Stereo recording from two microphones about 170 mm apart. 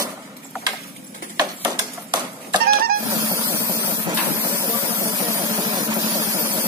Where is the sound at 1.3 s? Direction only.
25° right (ahead or behind).